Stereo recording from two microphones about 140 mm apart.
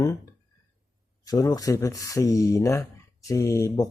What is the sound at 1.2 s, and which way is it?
Speech, 25° left (ahead or behind).